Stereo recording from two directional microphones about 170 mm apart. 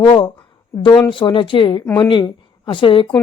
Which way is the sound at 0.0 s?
25° left (ahead or behind).